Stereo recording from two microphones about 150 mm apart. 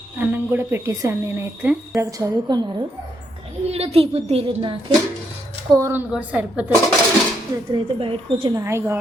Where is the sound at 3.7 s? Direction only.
40° right (ahead or behind).